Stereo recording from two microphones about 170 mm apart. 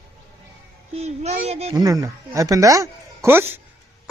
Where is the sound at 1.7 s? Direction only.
20° right (ahead or behind).